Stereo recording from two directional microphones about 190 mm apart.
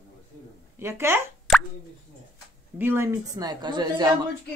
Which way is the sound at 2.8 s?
10° right (ahead or behind).